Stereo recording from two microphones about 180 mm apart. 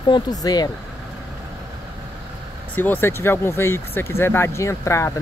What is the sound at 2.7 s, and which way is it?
Speech, 10° left (ahead or behind).